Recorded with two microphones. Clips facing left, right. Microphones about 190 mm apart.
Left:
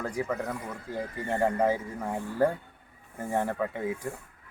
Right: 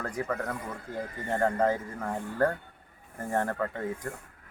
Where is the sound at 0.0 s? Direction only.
10° left (ahead or behind).